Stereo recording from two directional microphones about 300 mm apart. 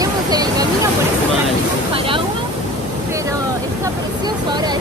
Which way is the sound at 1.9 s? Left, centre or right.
Centre.